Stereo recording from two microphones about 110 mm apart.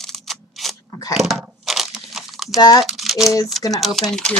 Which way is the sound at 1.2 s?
Centre (ahead or behind).